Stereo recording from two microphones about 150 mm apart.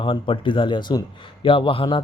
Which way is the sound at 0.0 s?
35° left (ahead or behind).